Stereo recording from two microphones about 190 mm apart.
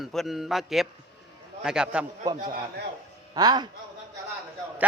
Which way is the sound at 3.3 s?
20° right (ahead or behind).